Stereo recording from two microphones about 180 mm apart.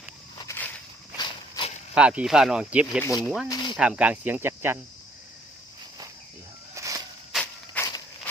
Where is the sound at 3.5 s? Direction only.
25° left (ahead or behind).